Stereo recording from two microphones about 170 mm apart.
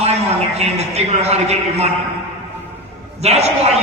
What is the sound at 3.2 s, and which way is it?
Speech, 40° right (ahead or behind).